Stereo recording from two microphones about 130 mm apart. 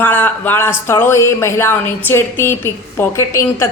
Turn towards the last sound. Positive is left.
turn(degrees=20)  # may be behind; listen again after turning